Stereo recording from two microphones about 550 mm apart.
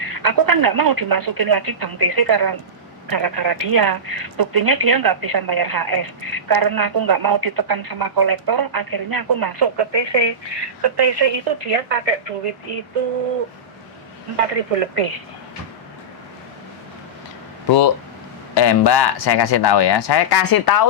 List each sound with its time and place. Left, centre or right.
0.0 s speech: right
14.3 s speech: right
18.5 s speech: left